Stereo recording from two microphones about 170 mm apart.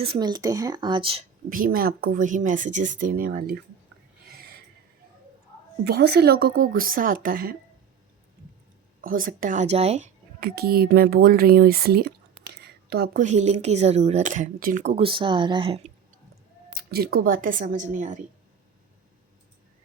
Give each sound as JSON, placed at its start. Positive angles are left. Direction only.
{"t": 0.0, "sound": "speech", "side_deg": -30}
{"t": 1.5, "sound": "speech", "side_deg": -55}
{"t": 4.3, "sound": "snort", "side_deg": -65}
{"t": 5.8, "sound": "speech", "side_deg": -70}
{"t": 9.0, "sound": "speech", "side_deg": -55}
{"t": 10.4, "sound": "a woman's voice", "side_deg": -65}
{"t": 13.2, "sound": "speech", "side_deg": -40}
{"t": 14.9, "sound": "speech", "side_deg": -30}
{"t": 16.7, "sound": "speech", "side_deg": -65}